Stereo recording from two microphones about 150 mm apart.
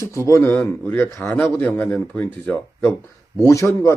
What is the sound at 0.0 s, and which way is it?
Speech, 20° left (ahead or behind).